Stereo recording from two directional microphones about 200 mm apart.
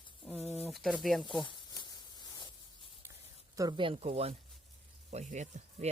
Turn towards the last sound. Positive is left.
turn(degrees=-35)  # may be behind; listen again after turning